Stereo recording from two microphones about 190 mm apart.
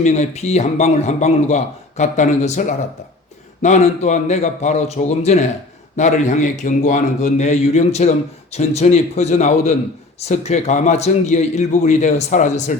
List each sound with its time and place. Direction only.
0.0 s a man's voice: 40° left (ahead or behind)